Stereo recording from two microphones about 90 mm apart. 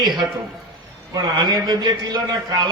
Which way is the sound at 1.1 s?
50° right (ahead or behind).